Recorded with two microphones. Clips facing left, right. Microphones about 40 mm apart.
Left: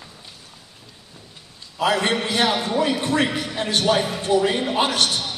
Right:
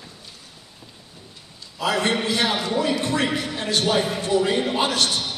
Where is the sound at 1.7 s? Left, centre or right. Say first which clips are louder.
Left 2 dB; left.